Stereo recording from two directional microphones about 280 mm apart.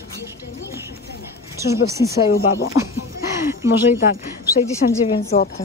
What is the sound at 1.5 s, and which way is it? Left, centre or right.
Speech, centre.